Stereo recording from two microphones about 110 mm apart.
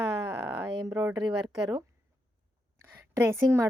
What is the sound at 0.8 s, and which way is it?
Speech, 35° right (ahead or behind).